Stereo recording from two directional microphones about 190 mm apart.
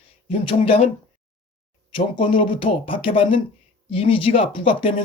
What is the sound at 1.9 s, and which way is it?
Speech, 25° left (ahead or behind).